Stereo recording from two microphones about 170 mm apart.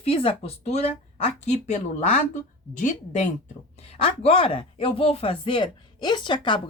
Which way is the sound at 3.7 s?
35° left (ahead or behind).